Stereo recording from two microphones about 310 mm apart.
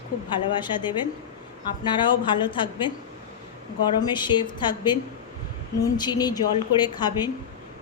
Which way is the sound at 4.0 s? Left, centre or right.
Centre.